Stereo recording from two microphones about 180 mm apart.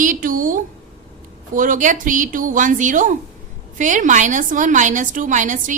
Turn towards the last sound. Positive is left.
turn(degrees=-45)  # may be behind; listen again after turning